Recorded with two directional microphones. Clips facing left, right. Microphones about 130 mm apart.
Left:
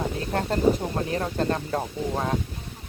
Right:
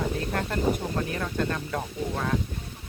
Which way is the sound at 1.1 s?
35° left (ahead or behind).